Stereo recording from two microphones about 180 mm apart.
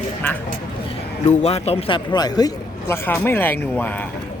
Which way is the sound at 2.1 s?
20° left (ahead or behind).